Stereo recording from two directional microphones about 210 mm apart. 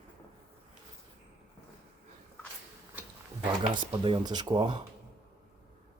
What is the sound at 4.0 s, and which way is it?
Speech, 20° right (ahead or behind).